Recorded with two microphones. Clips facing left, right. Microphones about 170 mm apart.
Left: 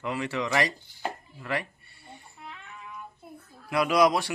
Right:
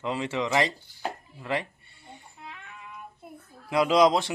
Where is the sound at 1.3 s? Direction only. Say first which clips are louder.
Right 4 dB; 20° right (ahead or behind).